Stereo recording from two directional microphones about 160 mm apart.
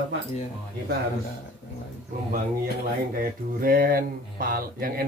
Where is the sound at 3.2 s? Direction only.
65° right (ahead or behind).